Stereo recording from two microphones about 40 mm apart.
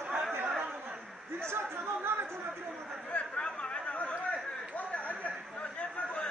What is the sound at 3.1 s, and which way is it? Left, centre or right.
Chatter, left.